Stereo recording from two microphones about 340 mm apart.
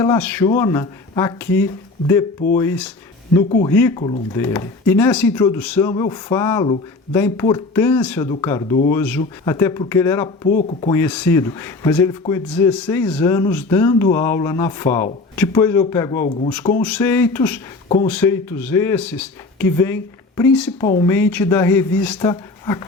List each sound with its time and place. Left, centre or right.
0.0 s speech: centre
10.5 s speech: left
17.8 s speech: centre
18.1 s speech: centre